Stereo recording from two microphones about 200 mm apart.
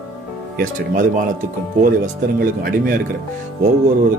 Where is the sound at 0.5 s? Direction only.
45° right (ahead or behind).